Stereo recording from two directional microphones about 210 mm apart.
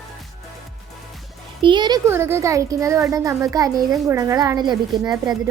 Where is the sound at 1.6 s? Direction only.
20° right (ahead or behind).